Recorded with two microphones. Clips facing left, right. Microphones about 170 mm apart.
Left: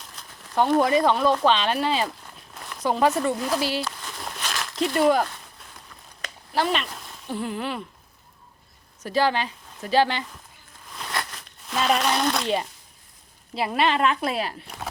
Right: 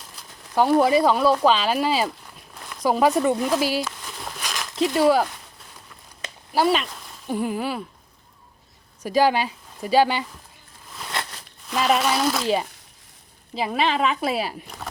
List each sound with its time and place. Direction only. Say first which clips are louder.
0.2 s speech: right 2 dB; 5° right (ahead or behind)
2.8 s a sound: right 3 dB; 10° right (ahead or behind)
4.9 s speech: right 1 dB; 5° right (ahead or behind)
6.5 s speech: right 4 dB; 10° right (ahead or behind)
9.0 s speech: right 3 dB; 10° right (ahead or behind)
11.1 s a sound: even; 25° right (ahead or behind)
11.7 s speech: right 2 dB; 5° right (ahead or behind)